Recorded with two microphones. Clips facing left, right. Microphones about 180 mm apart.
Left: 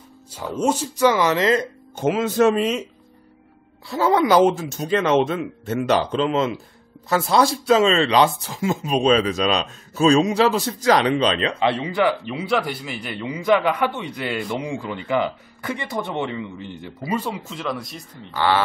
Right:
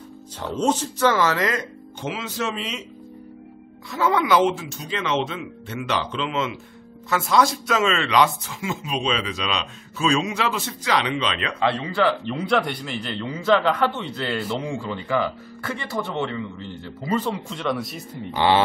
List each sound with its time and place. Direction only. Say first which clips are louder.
0.4 s a man's voice: left 1 dB; 10° left (ahead or behind); by 1.7 s 25° left (ahead or behind)
2.0 s speech: left 10 dB; 50° left (ahead or behind)
3.9 s speech: left 3 dB; 35° left (ahead or behind)
11.6 s a man's voice: even; 20° left (ahead or behind); by 18.0 s centre (ahead or behind)
18.3 s speech: right 1 dB; 20° right (ahead or behind)